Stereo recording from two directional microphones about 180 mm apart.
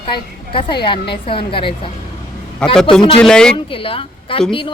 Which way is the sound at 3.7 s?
30° left (ahead or behind).